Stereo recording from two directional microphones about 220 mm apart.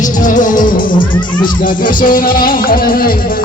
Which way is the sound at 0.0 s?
35° left (ahead or behind).